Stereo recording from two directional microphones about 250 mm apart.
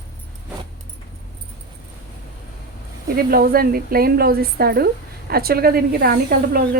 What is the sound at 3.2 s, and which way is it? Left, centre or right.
Speech, right.